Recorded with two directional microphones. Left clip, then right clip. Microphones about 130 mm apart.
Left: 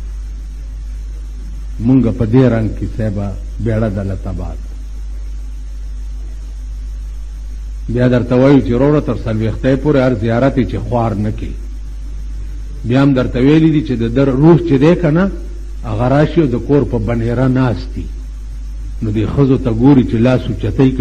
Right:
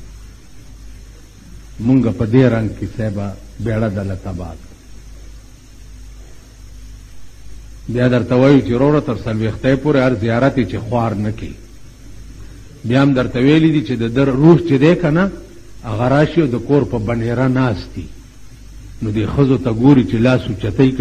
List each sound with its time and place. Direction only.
1.9 s a man's voice: 20° left (ahead or behind)
7.9 s a man's voice: 20° left (ahead or behind)
12.8 s a man's voice: 20° left (ahead or behind)
19.0 s a man's voice: 20° left (ahead or behind)